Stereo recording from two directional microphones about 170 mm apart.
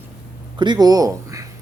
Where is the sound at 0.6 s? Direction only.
25° right (ahead or behind).